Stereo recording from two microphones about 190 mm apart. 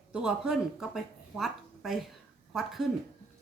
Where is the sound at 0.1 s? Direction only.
5° right (ahead or behind).